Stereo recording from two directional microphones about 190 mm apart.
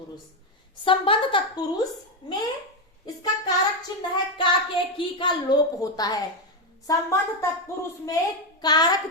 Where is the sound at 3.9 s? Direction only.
20° left (ahead or behind).